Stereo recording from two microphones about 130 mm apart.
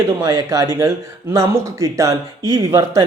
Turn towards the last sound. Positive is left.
turn(degrees=-25)  # may be behind; listen again after turning